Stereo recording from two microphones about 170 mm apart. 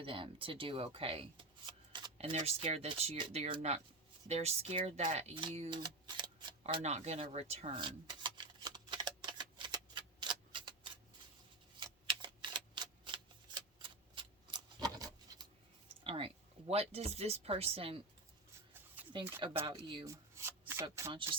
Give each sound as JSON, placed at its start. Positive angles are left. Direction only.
{"t": 0.0, "sound": "speech", "side_deg": -30}
{"t": 5.7, "sound": "a sound", "side_deg": -25}
{"t": 6.6, "sound": "a sound", "side_deg": -40}
{"t": 11.8, "sound": "typewriter", "side_deg": -25}
{"t": 16.0, "sound": "speech", "side_deg": -35}
{"t": 19.0, "sound": "a sound", "side_deg": -10}
{"t": 19.6, "sound": "speech", "side_deg": -30}
{"t": 20.3, "sound": "shuffling cards", "side_deg": -15}
{"t": 21.1, "sound": "speech", "side_deg": -30}